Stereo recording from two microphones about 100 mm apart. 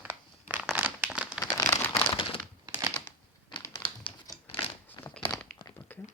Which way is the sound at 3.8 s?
50° left (ahead or behind).